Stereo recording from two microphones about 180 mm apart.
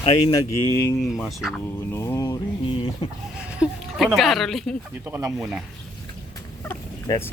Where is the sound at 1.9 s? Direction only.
15° left (ahead or behind).